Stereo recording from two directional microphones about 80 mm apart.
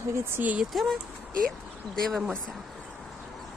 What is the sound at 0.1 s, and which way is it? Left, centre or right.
Speech, right.